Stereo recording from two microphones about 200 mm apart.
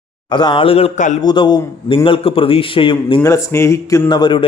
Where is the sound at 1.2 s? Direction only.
20° left (ahead or behind).